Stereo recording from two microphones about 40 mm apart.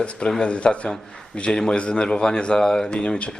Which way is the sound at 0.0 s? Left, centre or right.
Left.